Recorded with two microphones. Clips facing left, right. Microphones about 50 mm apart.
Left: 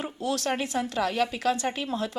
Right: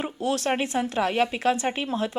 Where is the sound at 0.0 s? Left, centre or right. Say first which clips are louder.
Right 3 dB; right.